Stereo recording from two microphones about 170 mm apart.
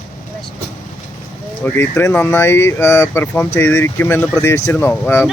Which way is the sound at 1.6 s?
15° left (ahead or behind).